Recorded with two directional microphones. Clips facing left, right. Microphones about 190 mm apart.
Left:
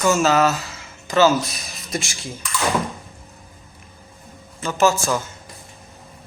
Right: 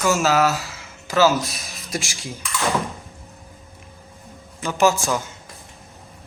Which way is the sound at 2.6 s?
Centre (ahead or behind).